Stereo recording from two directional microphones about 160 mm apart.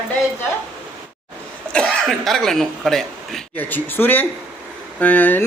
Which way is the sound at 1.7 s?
5° left (ahead or behind).